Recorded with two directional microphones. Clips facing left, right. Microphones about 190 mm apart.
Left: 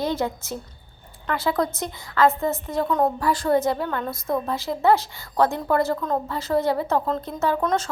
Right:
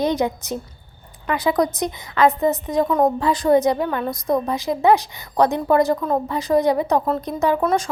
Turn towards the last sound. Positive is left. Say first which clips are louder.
# right 4 dB
turn(degrees=-10)  # may be behind; listen again after turning